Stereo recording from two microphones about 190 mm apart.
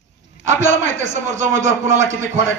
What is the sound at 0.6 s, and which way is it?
A man's voice, 40° right (ahead or behind).